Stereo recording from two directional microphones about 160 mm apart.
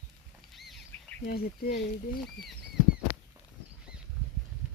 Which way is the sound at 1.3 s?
80° left.